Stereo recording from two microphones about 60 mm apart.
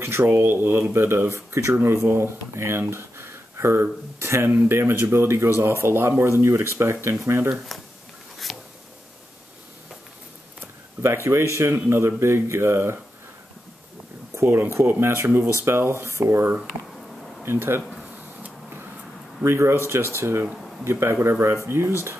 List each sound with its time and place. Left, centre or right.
0.0 s speech: right
8.5 s a sound: centre
11.2 s speech: right
14.3 s speech: right
17.5 s speech: right
19.4 s speech: right